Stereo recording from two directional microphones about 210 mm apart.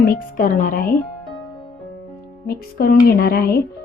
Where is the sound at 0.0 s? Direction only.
45° left (ahead or behind).